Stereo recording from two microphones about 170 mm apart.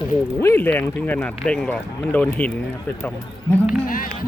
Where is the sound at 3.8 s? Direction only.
55° left (ahead or behind).